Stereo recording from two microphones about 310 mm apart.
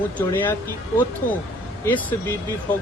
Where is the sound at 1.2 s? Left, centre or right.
Left.